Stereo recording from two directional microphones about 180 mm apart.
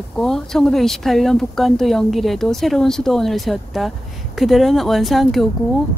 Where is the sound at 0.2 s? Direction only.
5° left (ahead or behind).